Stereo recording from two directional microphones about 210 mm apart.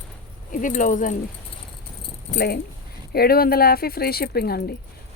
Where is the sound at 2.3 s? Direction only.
50° left (ahead or behind).